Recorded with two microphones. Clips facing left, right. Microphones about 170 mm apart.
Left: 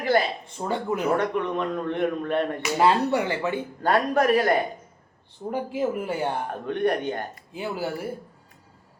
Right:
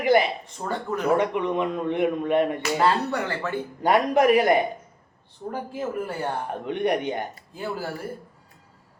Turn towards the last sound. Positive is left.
turn(degrees=10)  # may be behind; listen again after turning